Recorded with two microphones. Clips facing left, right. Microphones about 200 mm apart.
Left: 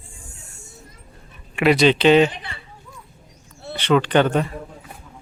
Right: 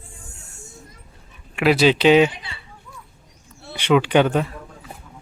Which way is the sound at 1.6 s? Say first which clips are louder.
Left 1 dB; 5° right (ahead or behind).